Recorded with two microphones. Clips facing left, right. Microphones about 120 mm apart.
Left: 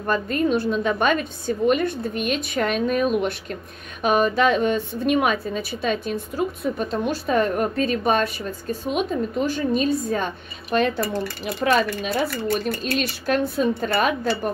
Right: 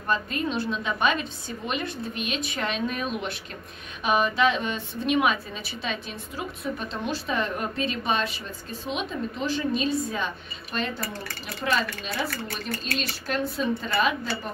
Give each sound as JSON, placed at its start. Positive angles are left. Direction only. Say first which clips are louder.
{"t": 0.0, "sound": "a woman's voice", "louder": "left 6 dB", "side_deg": 50}